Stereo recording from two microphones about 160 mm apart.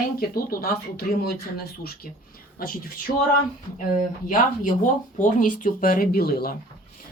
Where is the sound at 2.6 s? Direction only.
65° left (ahead or behind).